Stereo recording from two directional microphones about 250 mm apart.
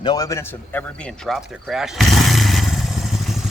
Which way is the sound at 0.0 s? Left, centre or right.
Centre.